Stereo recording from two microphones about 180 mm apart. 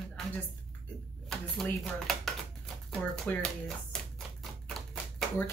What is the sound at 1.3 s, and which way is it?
Speech, centre (ahead or behind).